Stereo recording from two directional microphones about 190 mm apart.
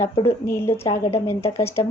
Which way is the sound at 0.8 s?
30° left (ahead or behind).